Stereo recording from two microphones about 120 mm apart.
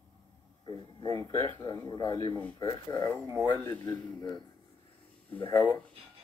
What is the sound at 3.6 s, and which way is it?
Speech, 15° left (ahead or behind).